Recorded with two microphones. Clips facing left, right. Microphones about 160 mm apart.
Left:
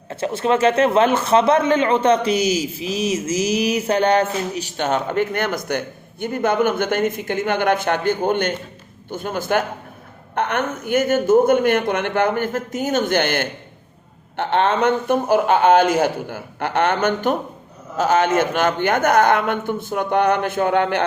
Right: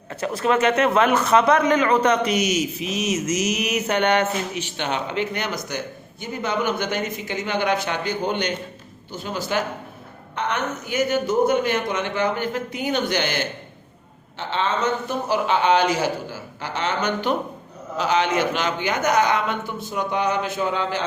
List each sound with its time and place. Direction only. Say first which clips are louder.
0.1 s a man's voice: left 2 dB; 30° left (ahead or behind); by 21.0 s 60° left (ahead or behind)